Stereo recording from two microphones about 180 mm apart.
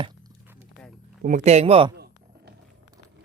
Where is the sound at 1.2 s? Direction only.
40° right (ahead or behind).